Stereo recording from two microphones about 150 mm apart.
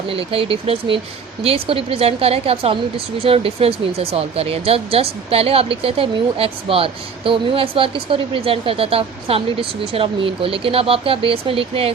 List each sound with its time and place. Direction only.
0.1 s speech: 40° right (ahead or behind)